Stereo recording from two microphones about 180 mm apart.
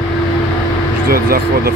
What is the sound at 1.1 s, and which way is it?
Speech, 55° right (ahead or behind).